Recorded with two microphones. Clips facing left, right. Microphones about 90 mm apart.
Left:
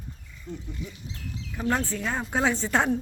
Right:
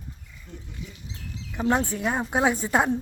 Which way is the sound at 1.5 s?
20° right (ahead or behind).